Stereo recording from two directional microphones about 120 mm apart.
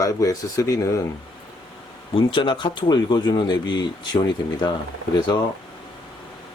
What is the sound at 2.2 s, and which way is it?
Speech, 45° left (ahead or behind).